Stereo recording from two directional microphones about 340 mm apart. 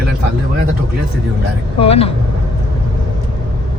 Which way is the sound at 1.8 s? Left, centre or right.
Centre.